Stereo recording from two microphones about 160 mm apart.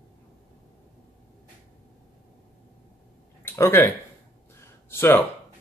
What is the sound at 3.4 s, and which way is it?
Speech, 15° left (ahead or behind).